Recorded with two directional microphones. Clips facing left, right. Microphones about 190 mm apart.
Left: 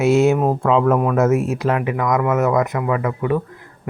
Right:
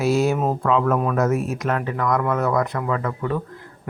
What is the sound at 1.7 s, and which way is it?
Speech, 10° left (ahead or behind).